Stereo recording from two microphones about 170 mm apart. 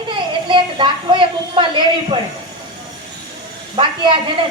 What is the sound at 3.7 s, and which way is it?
Speech, 30° right (ahead or behind).